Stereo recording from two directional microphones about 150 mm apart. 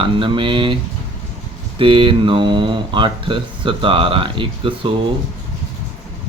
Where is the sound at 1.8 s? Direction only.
35° right (ahead or behind).